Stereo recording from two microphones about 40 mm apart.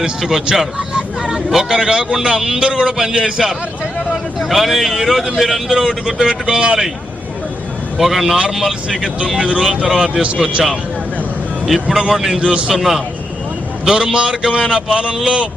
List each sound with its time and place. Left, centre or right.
0.0 s a man's voice: centre
4.1 s speech: centre
6.1 s speech: centre
7.9 s speech: centre
9.4 s a man's voice: centre
10.2 s speech: right
11.6 s speech: centre
13.8 s a man's voice: centre